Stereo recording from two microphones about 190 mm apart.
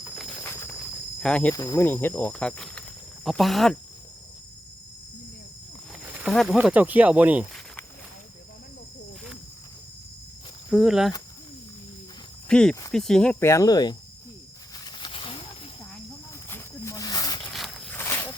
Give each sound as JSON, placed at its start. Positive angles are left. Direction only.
{"t": 0.2, "sound": "train", "side_deg": 5}
{"t": 1.2, "sound": "speech", "side_deg": 5}
{"t": 1.5, "sound": "speech", "side_deg": 15}
{"t": 6.0, "sound": "speech", "side_deg": -5}
{"t": 10.7, "sound": "speech", "side_deg": 0}
{"t": 12.5, "sound": "speech", "side_deg": 5}
{"t": 13.4, "sound": "speech", "side_deg": 15}
{"t": 14.8, "sound": "a sound", "side_deg": 25}
{"t": 16.5, "sound": "a sound", "side_deg": 15}
{"t": 17.5, "sound": "walk", "side_deg": 0}
{"t": 17.9, "sound": "a sound", "side_deg": 15}